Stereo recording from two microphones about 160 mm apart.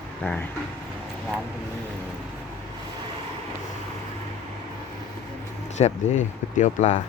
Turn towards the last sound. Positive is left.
turn(degrees=50)  # may be behind; listen again after turning